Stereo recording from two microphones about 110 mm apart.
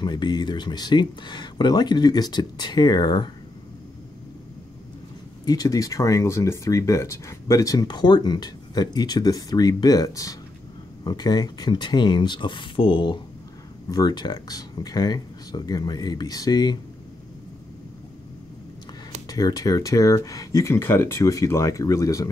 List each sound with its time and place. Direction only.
0.0 s speech: 45° left (ahead or behind)
5.4 s speech: 35° left (ahead or behind)
13.8 s speech: 35° left (ahead or behind)
19.2 s speech: 35° left (ahead or behind)